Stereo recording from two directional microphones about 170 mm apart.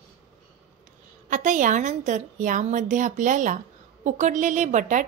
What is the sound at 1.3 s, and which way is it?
A woman's voice, 50° right (ahead or behind).